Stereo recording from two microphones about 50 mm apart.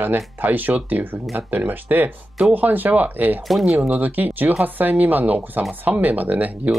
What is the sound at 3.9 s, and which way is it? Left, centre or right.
Speech, right.